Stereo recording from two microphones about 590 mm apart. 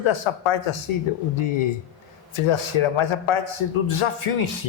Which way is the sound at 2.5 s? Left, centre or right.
Left.